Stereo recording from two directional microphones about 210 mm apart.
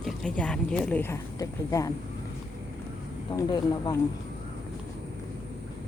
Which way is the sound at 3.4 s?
20° left (ahead or behind).